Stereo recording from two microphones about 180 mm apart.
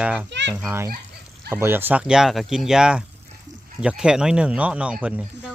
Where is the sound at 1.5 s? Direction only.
15° right (ahead or behind).